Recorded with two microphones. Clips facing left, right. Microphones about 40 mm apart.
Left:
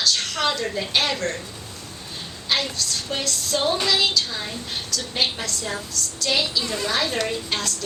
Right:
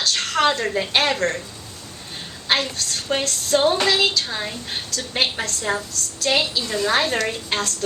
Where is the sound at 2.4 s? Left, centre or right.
Right.